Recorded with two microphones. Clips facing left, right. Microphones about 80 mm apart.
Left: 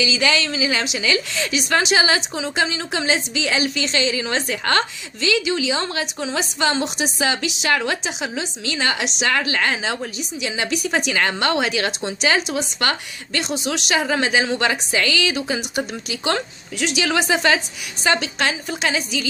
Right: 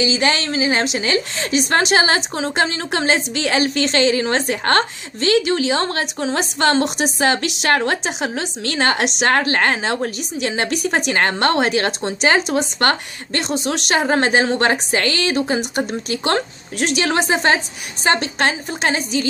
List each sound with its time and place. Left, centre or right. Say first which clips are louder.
0.0 s a woman's voice: right 2 dB; right